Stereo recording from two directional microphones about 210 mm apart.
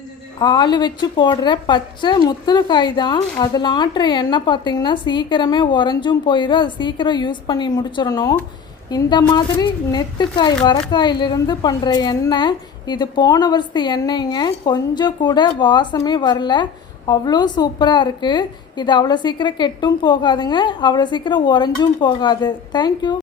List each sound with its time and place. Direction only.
0.3 s a woman's voice: 20° left (ahead or behind)